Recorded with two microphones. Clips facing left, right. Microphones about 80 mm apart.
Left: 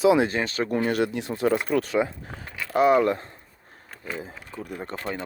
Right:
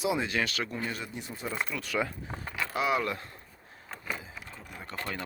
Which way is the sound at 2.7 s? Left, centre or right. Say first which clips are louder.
Left 11 dB; left.